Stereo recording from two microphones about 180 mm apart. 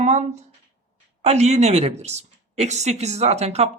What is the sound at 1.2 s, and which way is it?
Speech, 40° right (ahead or behind).